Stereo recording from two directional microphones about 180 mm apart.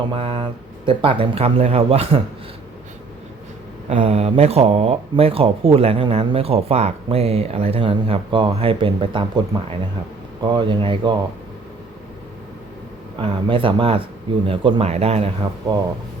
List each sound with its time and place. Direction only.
0.1 s speech: 30° right (ahead or behind)
3.8 s speech: 35° right (ahead or behind)
10.4 s speech: 25° right (ahead or behind)
13.1 s speech: 30° right (ahead or behind)